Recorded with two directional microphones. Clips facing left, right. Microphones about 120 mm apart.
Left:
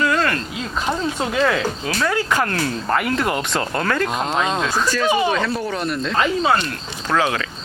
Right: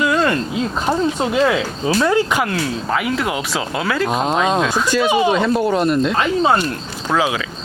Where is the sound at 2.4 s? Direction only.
5° right (ahead or behind).